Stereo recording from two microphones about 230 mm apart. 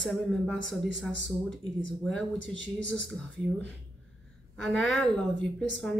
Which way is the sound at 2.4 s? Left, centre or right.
Right.